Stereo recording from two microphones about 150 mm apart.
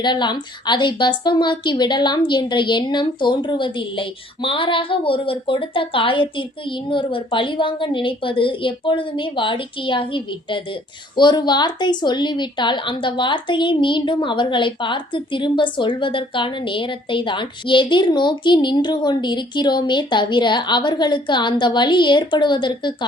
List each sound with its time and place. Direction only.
0.0 s a woman's voice: 30° left (ahead or behind)